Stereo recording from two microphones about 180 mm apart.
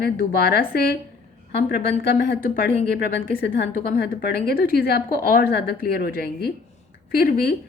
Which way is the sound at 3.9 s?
65° left (ahead or behind).